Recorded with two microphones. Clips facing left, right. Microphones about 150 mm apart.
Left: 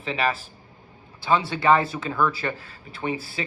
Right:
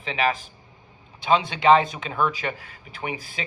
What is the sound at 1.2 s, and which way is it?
Speech, 15° right (ahead or behind).